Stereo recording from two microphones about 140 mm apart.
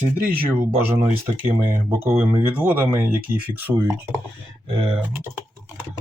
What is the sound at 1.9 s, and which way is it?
Speech, 15° right (ahead or behind).